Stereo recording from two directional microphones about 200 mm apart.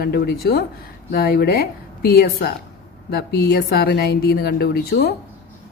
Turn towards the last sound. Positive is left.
turn(degrees=50)  # may be behind; listen again after turning